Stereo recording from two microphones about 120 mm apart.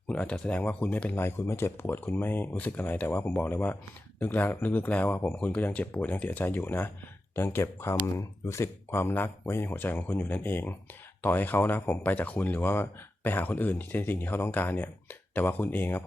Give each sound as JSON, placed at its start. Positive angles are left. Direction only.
{"t": 0.1, "sound": "speech", "side_deg": 10}